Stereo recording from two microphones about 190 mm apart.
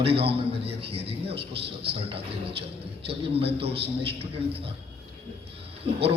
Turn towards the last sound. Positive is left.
turn(degrees=-30)  # may be behind; listen again after turning